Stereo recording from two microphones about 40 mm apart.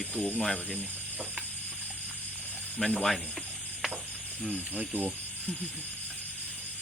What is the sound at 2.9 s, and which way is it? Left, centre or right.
Sizzle, centre.